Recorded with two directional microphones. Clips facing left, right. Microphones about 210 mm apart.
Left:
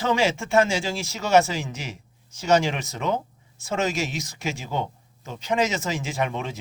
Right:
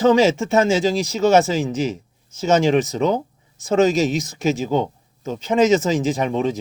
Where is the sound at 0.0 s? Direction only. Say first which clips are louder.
Right 8 dB; 40° right (ahead or behind).